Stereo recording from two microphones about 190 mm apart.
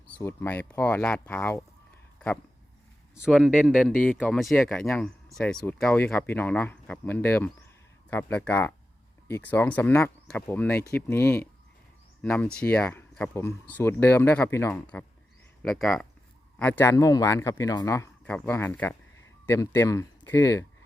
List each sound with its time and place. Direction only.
0.1 s speech: 15° left (ahead or behind)
3.2 s speech: 5° right (ahead or behind); by 20.7 s 15° left (ahead or behind)